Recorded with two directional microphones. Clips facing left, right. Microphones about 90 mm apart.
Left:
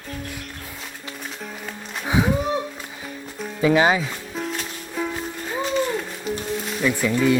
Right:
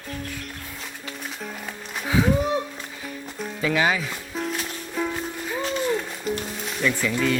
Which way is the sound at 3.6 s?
25° left (ahead or behind).